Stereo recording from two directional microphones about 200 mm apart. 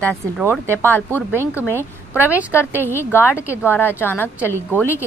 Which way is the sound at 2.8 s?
10° left (ahead or behind).